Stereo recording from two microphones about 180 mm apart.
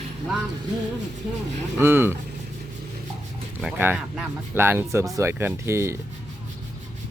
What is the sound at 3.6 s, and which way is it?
Speech, 5° right (ahead or behind).